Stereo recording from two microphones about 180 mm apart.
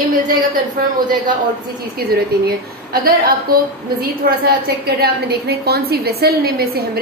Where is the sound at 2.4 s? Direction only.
55° right (ahead or behind).